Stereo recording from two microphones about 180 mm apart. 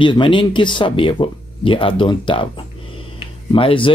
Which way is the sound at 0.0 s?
25° left (ahead or behind).